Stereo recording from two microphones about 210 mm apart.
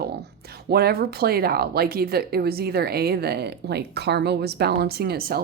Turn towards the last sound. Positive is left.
turn(degrees=-45)  # may be behind; listen again after turning